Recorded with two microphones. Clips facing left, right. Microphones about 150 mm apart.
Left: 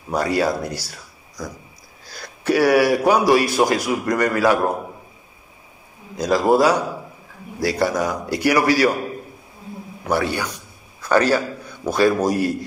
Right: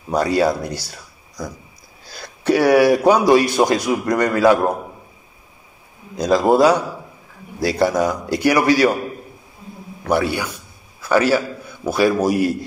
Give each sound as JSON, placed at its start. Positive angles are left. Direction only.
{"t": 0.1, "sound": "a man's voice", "side_deg": -25}
{"t": 2.1, "sound": "a man's voice", "side_deg": -20}
{"t": 6.1, "sound": "a man's voice", "side_deg": -20}
{"t": 10.0, "sound": "a man's voice", "side_deg": -15}